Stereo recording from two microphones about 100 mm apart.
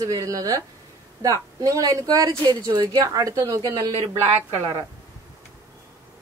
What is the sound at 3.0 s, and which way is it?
Speech, 35° right (ahead or behind).